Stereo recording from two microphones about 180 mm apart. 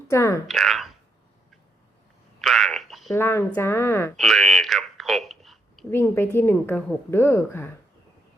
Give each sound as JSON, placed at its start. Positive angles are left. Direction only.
{"t": 0.1, "sound": "a woman's voice", "side_deg": 15}
{"t": 0.4, "sound": "speech", "side_deg": 0}
{"t": 2.4, "sound": "frog", "side_deg": 0}
{"t": 3.2, "sound": "a woman's voice", "side_deg": 15}
{"t": 4.2, "sound": "a sound", "side_deg": 0}
{"t": 5.9, "sound": "a woman's voice", "side_deg": 15}